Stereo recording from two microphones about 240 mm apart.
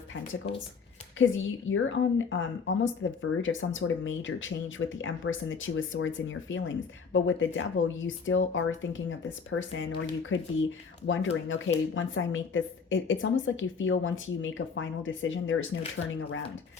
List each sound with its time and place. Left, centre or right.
1.2 s speech: left